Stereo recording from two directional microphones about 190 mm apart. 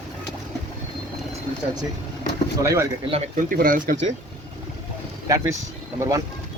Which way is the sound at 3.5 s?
45° right (ahead or behind).